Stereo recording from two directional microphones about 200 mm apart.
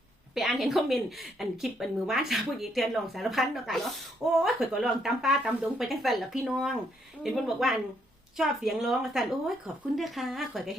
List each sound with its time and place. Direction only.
0.3 s a woman's voice: centre (ahead or behind)